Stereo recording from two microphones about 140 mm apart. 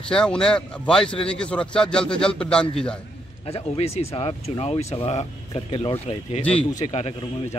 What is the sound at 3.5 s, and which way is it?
Speech, 50° left (ahead or behind).